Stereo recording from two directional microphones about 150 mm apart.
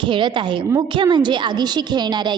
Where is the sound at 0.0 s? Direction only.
30° right (ahead or behind).